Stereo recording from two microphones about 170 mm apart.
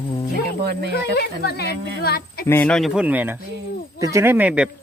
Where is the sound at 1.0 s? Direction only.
75° left (ahead or behind).